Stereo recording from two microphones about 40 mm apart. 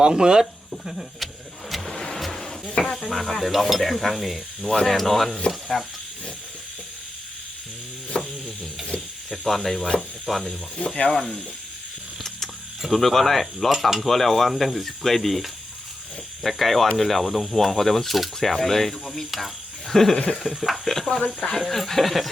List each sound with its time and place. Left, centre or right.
0.0 s speech: centre
1.7 s a sound: centre
3.4 s speech: centre
4.6 s speech: centre
4.9 s speech: centre
8.1 s stir: centre
9.5 s speech: centre
10.8 s speech: centre
12.9 s speech: centre
21.2 s speech: left
21.6 s speech: centre